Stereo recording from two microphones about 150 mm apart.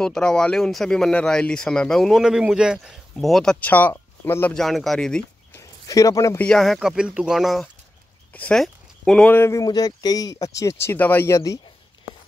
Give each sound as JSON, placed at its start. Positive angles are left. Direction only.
{"t": 0.0, "sound": "speech", "side_deg": 5}
{"t": 4.6, "sound": "speech", "side_deg": 0}
{"t": 5.6, "sound": "a sound", "side_deg": 20}
{"t": 6.4, "sound": "speech", "side_deg": 5}